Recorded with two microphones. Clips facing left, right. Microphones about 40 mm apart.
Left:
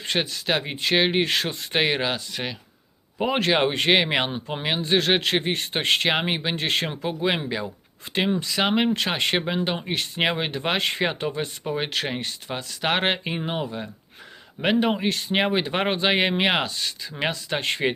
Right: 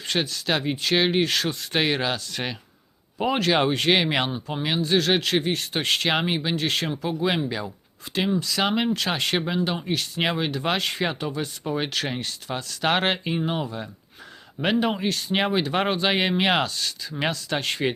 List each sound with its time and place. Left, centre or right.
0.0 s speech: left
3.3 s speech: left
6.1 s speech: centre